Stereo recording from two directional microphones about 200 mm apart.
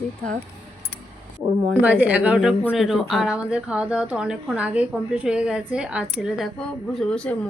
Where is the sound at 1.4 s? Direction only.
10° right (ahead or behind).